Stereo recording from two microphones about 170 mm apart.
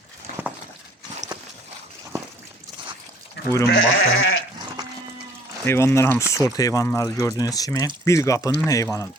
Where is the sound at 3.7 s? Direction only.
90° left.